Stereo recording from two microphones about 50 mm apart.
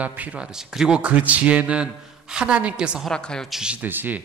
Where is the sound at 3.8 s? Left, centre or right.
Right.